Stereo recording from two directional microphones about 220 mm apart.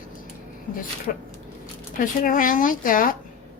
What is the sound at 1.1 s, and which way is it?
A woman's voice, 40° left (ahead or behind).